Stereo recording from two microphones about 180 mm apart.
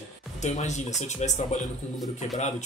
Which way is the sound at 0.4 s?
40° left (ahead or behind).